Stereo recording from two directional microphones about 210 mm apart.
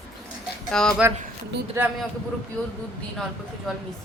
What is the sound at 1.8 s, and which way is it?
Speech, 10° right (ahead or behind).